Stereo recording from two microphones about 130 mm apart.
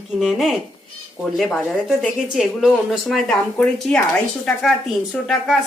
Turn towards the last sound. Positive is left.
turn(degrees=0)  # may be behind; listen again after turning